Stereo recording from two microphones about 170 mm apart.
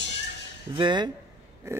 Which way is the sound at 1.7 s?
15° right (ahead or behind).